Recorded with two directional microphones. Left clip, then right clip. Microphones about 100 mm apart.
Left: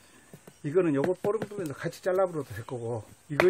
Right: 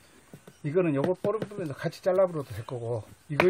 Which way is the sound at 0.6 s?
15° left (ahead or behind).